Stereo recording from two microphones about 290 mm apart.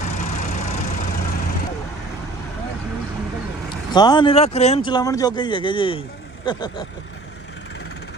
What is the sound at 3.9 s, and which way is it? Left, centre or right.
Speech, centre.